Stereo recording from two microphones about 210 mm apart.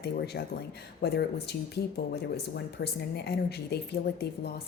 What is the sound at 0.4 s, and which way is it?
Speech, 55° left (ahead or behind).